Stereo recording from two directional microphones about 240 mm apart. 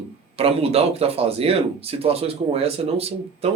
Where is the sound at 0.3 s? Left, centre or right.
Right.